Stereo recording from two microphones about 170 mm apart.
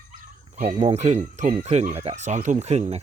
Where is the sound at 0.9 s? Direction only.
40° right (ahead or behind).